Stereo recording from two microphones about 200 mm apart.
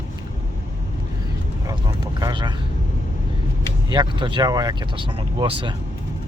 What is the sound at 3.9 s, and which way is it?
Speech, 25° right (ahead or behind).